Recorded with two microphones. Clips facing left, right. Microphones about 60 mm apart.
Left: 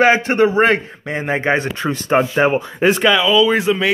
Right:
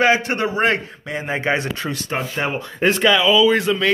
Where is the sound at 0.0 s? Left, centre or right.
Left.